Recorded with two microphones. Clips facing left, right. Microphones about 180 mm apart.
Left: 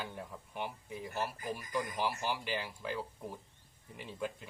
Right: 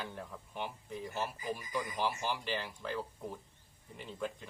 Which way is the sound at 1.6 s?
55° left (ahead or behind).